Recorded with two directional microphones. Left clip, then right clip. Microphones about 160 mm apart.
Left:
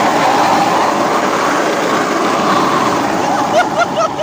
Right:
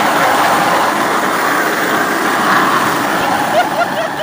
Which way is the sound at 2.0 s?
5° left (ahead or behind).